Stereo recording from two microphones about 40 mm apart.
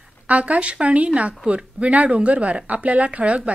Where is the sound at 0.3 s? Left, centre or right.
Right.